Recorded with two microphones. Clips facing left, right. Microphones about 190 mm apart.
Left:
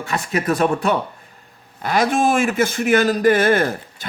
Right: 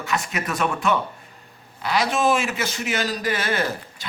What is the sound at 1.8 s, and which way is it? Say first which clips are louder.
A man's voice: left 4 dB; 50° left (ahead or behind).